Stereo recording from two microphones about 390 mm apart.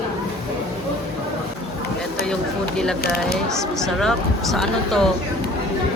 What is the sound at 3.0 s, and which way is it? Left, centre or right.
Speech, left.